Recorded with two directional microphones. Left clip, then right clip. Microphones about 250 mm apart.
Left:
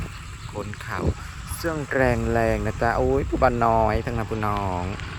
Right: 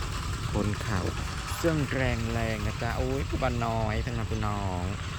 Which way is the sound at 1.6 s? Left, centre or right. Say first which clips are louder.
Left 6 dB; centre.